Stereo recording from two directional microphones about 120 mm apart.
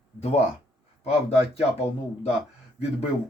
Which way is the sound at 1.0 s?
60° left (ahead or behind).